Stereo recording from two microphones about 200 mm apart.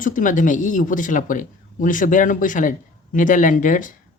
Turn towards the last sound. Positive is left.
turn(degrees=40)  # may be behind; listen again after turning